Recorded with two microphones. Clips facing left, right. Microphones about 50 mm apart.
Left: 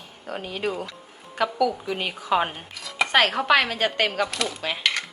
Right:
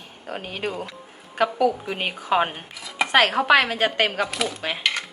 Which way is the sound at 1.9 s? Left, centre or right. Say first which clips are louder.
Right 1 dB; right.